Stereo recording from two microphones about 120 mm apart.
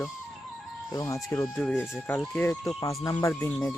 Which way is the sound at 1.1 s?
25° left (ahead or behind).